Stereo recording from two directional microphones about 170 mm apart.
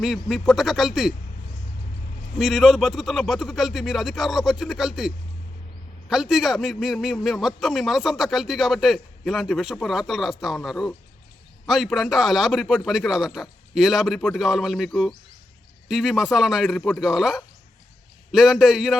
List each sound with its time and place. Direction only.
0.0 s a man's voice: centre (ahead or behind)
2.4 s a man's voice: centre (ahead or behind)